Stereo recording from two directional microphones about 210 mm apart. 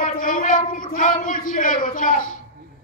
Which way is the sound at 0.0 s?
40° left (ahead or behind).